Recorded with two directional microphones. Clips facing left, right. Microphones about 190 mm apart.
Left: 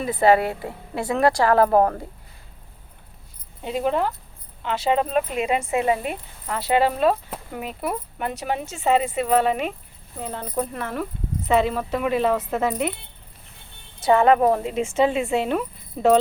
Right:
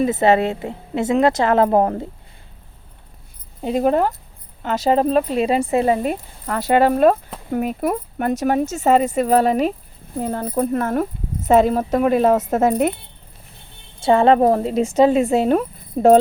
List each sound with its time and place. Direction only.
0.0 s a woman's voice: 25° right (ahead or behind)
3.6 s speech: 40° right (ahead or behind)
14.0 s speech: 30° right (ahead or behind); by 16.1 s 45° right (ahead or behind)